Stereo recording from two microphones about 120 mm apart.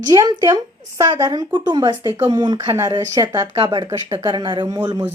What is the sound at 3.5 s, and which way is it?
Speech, 40° right (ahead or behind).